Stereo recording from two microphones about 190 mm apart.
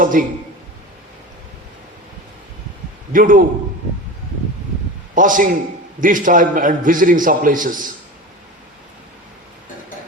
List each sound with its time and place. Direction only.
0.0 s a sound: 45° right (ahead or behind)
3.1 s a man's voice: 45° right (ahead or behind)
5.1 s a man's voice: 45° right (ahead or behind)